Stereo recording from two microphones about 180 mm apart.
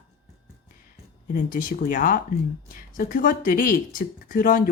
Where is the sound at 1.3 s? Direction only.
50° left (ahead or behind).